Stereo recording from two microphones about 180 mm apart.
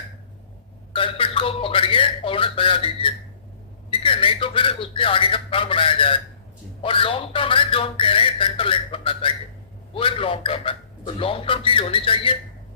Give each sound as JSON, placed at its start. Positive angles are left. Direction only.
{"t": 0.9, "sound": "a man's voice", "side_deg": 30}